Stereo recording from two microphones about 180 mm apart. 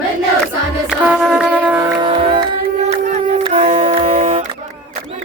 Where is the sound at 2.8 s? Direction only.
40° right (ahead or behind).